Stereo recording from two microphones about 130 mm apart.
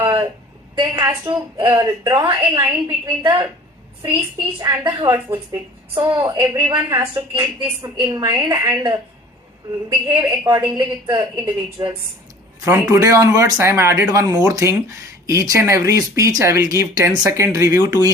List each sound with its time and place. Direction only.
0.0 s a sound: 35° right (ahead or behind)
1.0 s a woman's voice: 35° right (ahead or behind)
1.6 s speech: 25° right (ahead or behind)
4.4 s a woman's voice: 40° right (ahead or behind)
12.9 s speech: 25° right (ahead or behind)